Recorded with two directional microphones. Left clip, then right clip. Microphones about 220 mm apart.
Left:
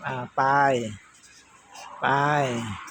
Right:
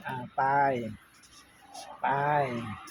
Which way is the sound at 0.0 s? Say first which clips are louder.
Left 5 dB; 30° left (ahead or behind).